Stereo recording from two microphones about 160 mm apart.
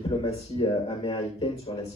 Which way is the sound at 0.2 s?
30° left (ahead or behind).